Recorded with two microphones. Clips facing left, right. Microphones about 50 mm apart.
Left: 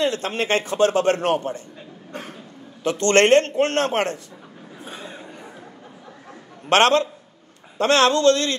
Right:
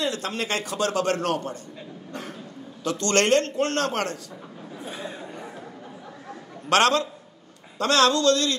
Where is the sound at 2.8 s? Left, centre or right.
Left.